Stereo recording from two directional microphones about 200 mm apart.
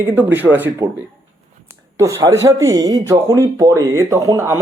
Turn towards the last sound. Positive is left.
turn(degrees=-15)  # may be behind; listen again after turning